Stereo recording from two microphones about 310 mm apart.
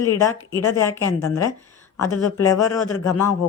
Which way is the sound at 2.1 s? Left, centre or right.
Left.